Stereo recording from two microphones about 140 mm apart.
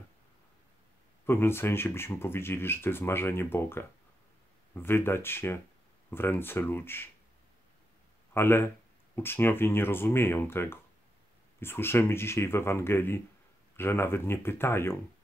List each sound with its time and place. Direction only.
1.2 s speech: 15° left (ahead or behind)
8.3 s speech: 15° left (ahead or behind)